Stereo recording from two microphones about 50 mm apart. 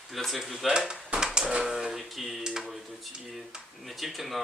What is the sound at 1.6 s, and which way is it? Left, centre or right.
Speech, centre.